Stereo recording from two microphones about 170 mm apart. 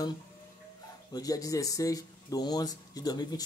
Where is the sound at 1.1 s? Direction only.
20° left (ahead or behind).